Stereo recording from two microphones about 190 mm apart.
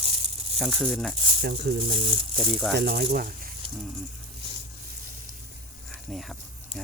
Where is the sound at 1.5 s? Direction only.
60° right (ahead or behind).